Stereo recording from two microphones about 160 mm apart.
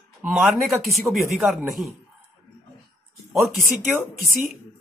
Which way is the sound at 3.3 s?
Centre (ahead or behind).